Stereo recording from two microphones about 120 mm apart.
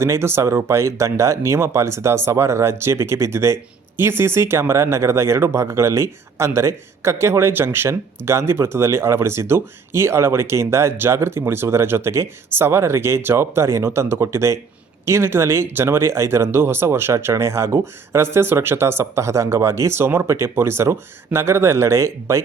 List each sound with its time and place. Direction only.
0.0 s speech: 20° right (ahead or behind)